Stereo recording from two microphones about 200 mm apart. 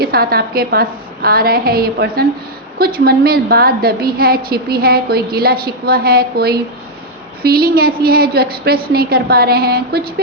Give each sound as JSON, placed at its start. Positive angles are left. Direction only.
{"t": 0.0, "sound": "a woman's voice", "side_deg": -50}